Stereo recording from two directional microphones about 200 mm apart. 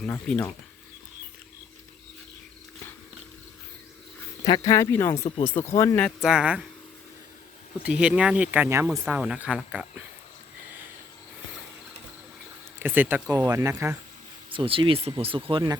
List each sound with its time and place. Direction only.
0.0 s speech: 5° left (ahead or behind)
4.4 s speech: 20° left (ahead or behind); by 6.7 s 5° right (ahead or behind)
7.9 s speech: 5° right (ahead or behind)
12.8 s speech: 10° right (ahead or behind)
14.5 s speech: 25° right (ahead or behind)